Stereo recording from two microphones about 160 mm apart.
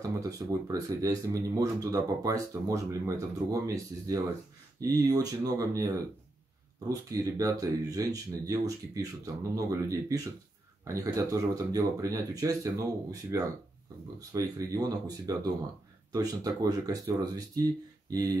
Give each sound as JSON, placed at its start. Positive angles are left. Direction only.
{"t": 0.0, "sound": "speech", "side_deg": -20}